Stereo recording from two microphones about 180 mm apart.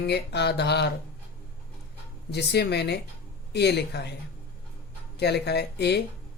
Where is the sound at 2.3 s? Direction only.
65° left (ahead or behind).